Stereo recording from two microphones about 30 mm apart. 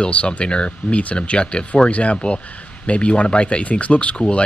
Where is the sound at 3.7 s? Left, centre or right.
Left.